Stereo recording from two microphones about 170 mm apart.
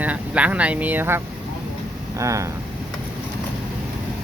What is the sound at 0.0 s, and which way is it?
Speech, 10° right (ahead or behind).